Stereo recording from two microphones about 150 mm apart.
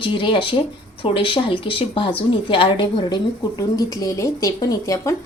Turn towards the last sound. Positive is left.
turn(degrees=20)  # may be behind; listen again after turning